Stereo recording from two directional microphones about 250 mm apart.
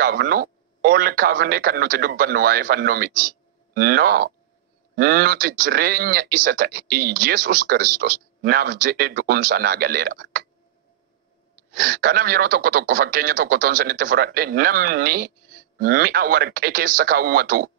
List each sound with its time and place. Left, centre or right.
0.0 s speech: right
11.7 s speech: right